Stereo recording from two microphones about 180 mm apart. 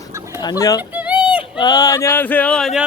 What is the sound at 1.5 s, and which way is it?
Speech, 20° left (ahead or behind).